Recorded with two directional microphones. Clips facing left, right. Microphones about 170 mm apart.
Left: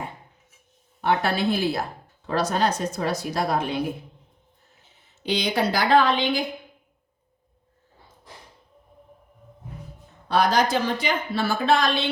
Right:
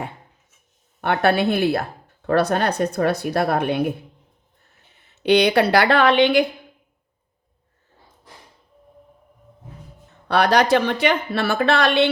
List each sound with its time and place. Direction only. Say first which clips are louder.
1.0 s speech: right 4 dB; 60° right (ahead or behind)
10.2 s speech: right 4 dB; 70° right (ahead or behind)